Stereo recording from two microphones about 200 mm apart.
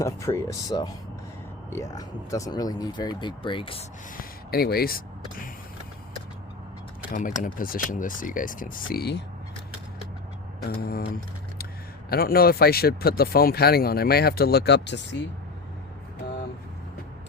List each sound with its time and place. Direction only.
0.0 s speech: 15° left (ahead or behind)
4.2 s speech: 50° left (ahead or behind)
7.1 s speech: 40° left (ahead or behind); by 9.2 s 55° left (ahead or behind)
10.7 s speech: 50° left (ahead or behind)
12.0 s speech: 50° left (ahead or behind)